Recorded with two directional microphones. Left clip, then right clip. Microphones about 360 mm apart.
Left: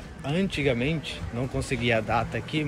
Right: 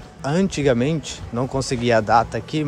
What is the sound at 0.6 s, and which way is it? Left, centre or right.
Speech, right.